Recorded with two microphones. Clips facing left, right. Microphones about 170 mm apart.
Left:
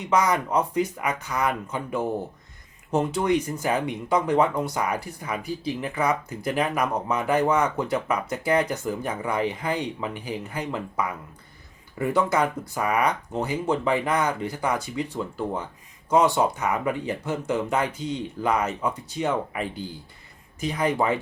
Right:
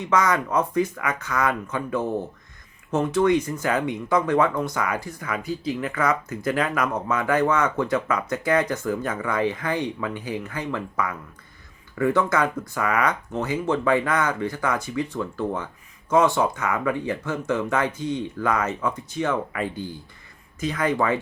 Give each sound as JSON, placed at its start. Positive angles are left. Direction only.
{"t": 0.1, "sound": "speech", "side_deg": 15}
{"t": 19.6, "sound": "speech", "side_deg": -20}
{"t": 20.6, "sound": "speech", "side_deg": 15}